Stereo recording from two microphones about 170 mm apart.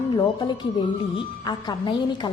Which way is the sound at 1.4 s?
25° left (ahead or behind).